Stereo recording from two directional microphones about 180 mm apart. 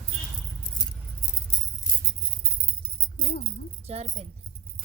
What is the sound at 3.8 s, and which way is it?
Keys jangling, 35° right (ahead or behind).